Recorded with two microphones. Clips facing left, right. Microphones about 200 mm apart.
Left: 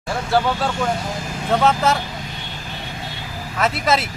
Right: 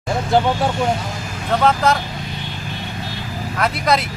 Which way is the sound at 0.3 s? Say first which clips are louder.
Right 2 dB; 20° right (ahead or behind).